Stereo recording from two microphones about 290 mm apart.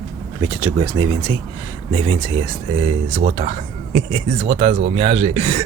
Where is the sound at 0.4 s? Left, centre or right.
Centre.